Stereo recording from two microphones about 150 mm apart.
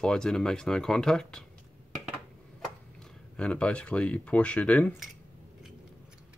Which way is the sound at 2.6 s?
5° left (ahead or behind).